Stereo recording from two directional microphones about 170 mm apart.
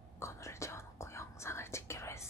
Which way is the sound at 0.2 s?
15° left (ahead or behind).